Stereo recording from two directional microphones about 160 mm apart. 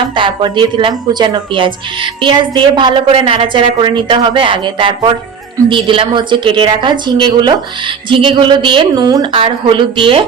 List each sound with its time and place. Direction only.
0.2 s a woman's voice: 30° right (ahead or behind)